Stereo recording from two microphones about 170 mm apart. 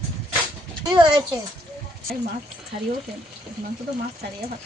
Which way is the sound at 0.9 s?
25° right (ahead or behind).